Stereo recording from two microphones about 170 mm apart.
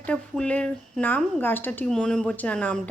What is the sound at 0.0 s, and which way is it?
Speech, 5° left (ahead or behind).